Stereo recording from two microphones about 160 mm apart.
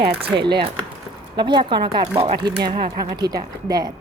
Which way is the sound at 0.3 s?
30° right (ahead or behind).